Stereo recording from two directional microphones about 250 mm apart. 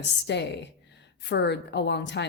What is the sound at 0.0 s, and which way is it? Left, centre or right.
A woman's voice, left.